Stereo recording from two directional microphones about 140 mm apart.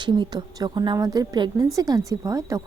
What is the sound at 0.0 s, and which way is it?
A woman's voice, 30° right (ahead or behind).